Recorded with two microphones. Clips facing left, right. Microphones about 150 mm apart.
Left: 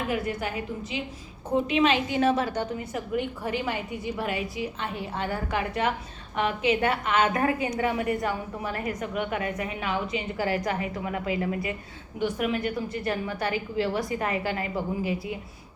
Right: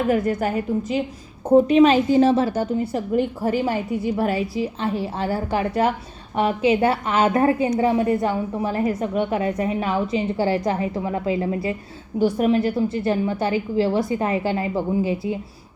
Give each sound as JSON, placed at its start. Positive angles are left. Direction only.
{"t": 0.1, "sound": "a woman's voice", "side_deg": -40}